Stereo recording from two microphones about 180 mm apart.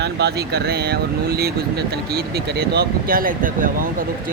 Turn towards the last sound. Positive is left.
turn(degrees=-50)  # may be behind; listen again after turning